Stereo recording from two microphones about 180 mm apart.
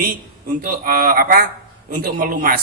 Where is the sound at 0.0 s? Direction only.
50° right (ahead or behind).